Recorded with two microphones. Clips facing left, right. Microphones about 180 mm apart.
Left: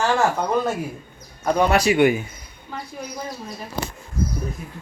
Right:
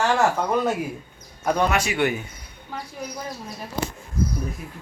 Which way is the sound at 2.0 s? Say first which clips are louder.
Left 7 dB; 10° left (ahead or behind).